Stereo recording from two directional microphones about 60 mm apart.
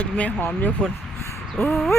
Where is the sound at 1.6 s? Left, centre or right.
Left.